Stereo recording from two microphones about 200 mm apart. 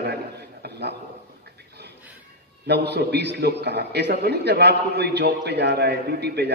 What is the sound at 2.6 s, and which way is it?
A man's voice, 55° right (ahead or behind).